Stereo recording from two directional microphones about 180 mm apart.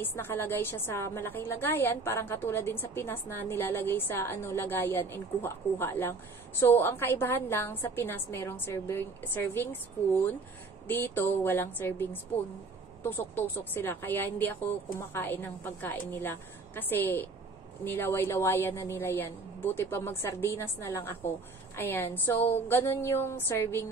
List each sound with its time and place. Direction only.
0.0 s a woman's voice: 15° left (ahead or behind)